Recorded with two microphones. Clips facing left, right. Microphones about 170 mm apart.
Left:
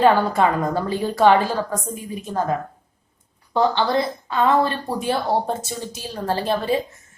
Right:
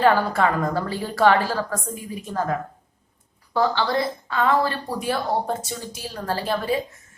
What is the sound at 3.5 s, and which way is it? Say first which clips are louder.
A woman's voice: left 3 dB; 25° left (ahead or behind).